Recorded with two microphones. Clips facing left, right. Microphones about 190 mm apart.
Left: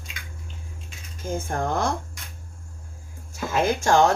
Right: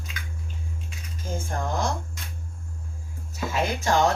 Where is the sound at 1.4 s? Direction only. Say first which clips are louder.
Left 2 dB; 55° left (ahead or behind).